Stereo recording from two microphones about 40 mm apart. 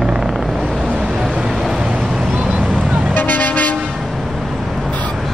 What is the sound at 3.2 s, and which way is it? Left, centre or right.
Vehicle, left.